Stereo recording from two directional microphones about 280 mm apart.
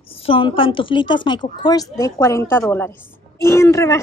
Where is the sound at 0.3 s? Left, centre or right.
Centre.